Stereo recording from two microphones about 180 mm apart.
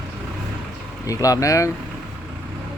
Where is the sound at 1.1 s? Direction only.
20° left (ahead or behind).